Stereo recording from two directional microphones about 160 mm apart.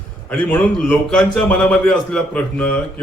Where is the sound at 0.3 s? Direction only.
10° left (ahead or behind).